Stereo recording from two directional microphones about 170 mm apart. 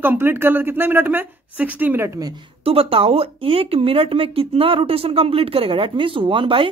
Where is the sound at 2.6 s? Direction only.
35° right (ahead or behind).